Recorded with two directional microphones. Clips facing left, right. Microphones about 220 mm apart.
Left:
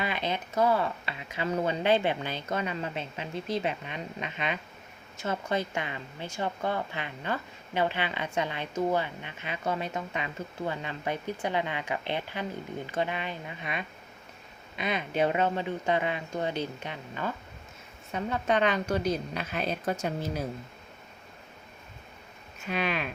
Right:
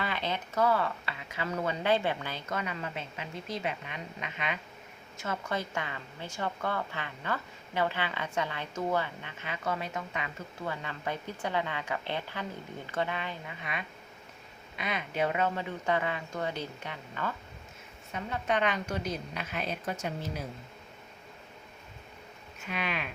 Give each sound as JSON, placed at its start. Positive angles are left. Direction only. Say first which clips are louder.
{"t": 0.0, "sound": "a woman's voice", "louder": "left 2 dB", "side_deg": 15}
{"t": 18.1, "sound": "a woman's voice", "louder": "left 4 dB", "side_deg": 35}
{"t": 22.7, "sound": "a woman's voice", "louder": "left 5 dB", "side_deg": 35}